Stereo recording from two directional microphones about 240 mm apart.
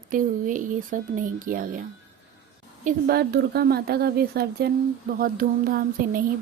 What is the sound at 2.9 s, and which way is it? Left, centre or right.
A woman's voice, right.